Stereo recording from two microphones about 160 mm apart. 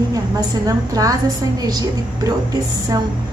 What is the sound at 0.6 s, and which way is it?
Speech, 20° right (ahead or behind).